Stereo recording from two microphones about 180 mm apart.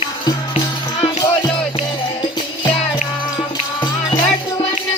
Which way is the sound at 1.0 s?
25° left (ahead or behind).